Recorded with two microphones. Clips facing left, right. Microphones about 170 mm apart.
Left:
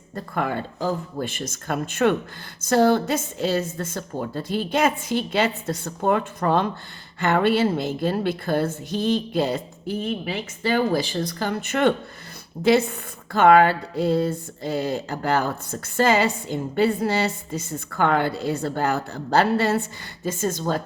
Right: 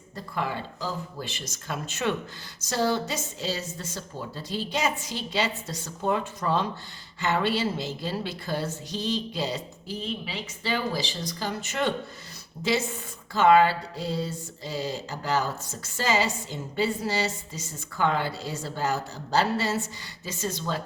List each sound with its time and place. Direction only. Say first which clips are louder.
0.2 s speech: left 5 dB; 55° left (ahead or behind)